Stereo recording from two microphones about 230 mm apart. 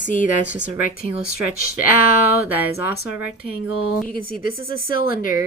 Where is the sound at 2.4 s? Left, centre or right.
Centre.